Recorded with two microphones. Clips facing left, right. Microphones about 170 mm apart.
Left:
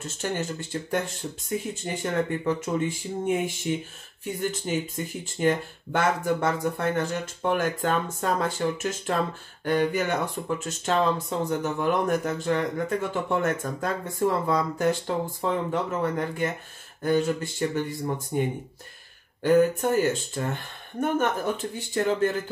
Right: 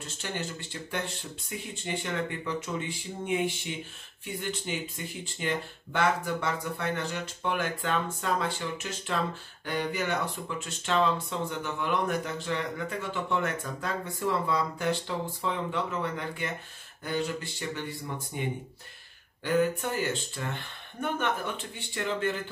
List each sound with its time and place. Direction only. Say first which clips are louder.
0.0 s speech: left 6 dB; 45° left (ahead or behind)
19.4 s speech: left 7 dB; 45° left (ahead or behind)